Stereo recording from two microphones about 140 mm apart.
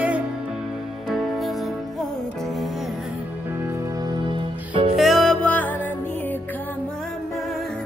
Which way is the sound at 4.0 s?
35° right (ahead or behind).